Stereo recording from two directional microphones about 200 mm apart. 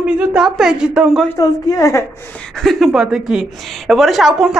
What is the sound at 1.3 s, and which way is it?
Speech, 15° left (ahead or behind).